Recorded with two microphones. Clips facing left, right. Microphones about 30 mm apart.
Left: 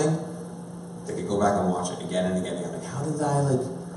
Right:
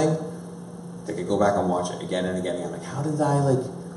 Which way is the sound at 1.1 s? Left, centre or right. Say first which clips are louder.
Right 2 dB; centre.